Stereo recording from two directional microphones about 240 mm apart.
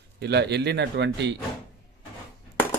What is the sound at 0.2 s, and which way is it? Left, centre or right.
Speech, right.